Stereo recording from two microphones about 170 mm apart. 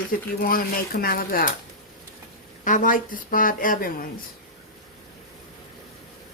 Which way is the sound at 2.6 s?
50° left (ahead or behind).